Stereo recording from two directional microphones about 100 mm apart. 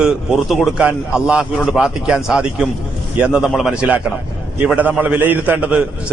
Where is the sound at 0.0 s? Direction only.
5° right (ahead or behind).